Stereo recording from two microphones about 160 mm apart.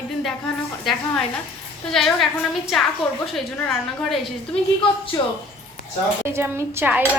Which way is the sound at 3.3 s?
Centre (ahead or behind).